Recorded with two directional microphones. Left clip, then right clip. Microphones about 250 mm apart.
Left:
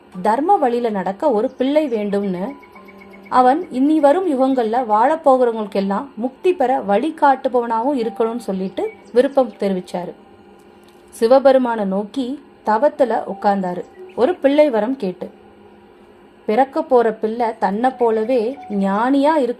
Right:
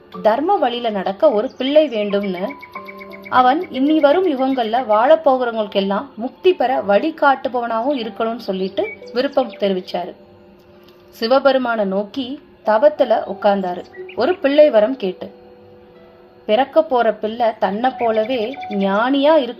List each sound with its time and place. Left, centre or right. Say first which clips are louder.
0.3 s a woman's voice: even; left
11.2 s a woman's voice: left 3 dB; left
16.5 s a woman's voice: right 1 dB; left